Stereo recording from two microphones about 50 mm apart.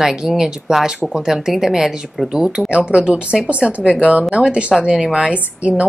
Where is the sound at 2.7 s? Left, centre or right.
Right.